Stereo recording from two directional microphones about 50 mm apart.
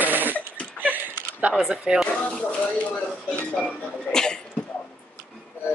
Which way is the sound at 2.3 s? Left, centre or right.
Left.